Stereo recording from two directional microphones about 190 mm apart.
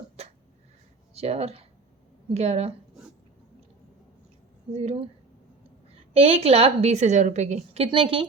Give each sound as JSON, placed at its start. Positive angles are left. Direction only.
{"t": 0.2, "sound": "a sound", "side_deg": -35}
{"t": 1.1, "sound": "a woman's voice", "side_deg": -35}
{"t": 4.7, "sound": "a woman's voice", "side_deg": -35}
{"t": 6.1, "sound": "a woman's voice", "side_deg": -30}